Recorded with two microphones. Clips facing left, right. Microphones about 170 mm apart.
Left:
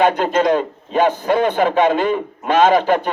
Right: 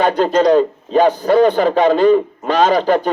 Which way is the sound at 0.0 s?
40° right (ahead or behind).